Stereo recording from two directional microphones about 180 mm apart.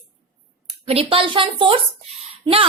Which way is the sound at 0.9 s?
30° right (ahead or behind).